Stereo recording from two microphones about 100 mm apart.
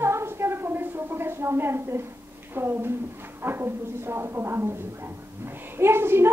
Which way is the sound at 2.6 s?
25° right (ahead or behind).